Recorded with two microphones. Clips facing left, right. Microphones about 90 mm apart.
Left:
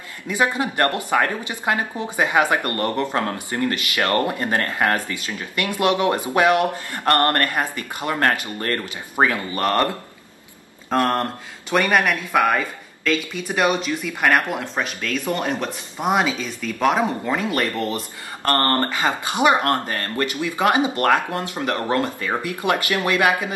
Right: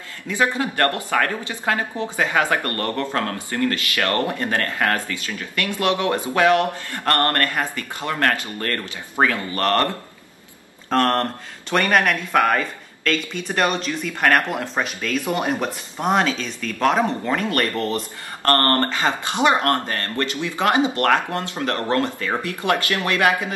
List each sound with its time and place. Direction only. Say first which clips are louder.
0.3 s speech: even; 20° left (ahead or behind)
10.9 s a man's voice: right 1 dB; 10° left (ahead or behind); by 15.7 s 10° right (ahead or behind)
16.0 s speech: even; 5° left (ahead or behind)
18.4 s speech: right 1 dB; 20° left (ahead or behind)